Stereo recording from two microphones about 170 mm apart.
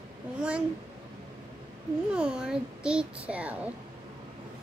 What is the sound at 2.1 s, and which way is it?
A child's voice, 5° right (ahead or behind).